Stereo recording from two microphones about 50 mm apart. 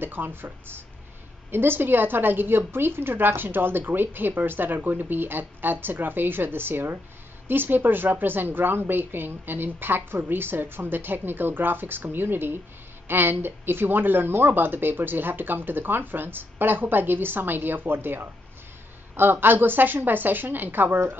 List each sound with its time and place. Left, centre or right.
0.0 s a woman's voice: right